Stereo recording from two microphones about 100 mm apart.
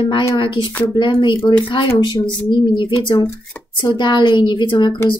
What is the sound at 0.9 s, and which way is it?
Speech, 50° left (ahead or behind).